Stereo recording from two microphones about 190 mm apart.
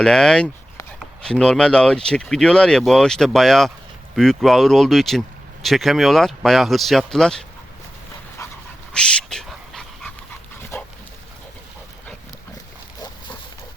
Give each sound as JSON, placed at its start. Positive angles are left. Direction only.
{"t": 0.0, "sound": "speech", "side_deg": 5}
{"t": 8.4, "sound": "dog", "side_deg": 15}
{"t": 8.9, "sound": "dog", "side_deg": 5}